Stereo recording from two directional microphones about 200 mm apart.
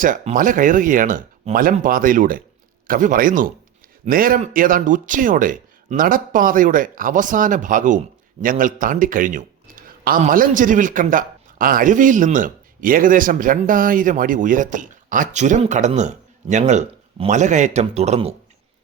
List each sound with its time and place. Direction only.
0.0 s speech: 40° right (ahead or behind)